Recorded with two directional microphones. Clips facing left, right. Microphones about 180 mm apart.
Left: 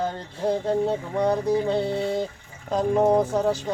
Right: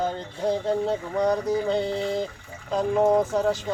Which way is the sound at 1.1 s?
25° left (ahead or behind).